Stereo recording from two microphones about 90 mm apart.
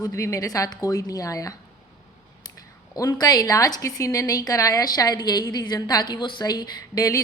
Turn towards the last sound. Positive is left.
turn(degrees=40)  # may be behind; listen again after turning